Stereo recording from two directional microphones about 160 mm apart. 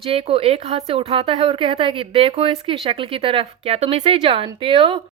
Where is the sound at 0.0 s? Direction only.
35° right (ahead or behind).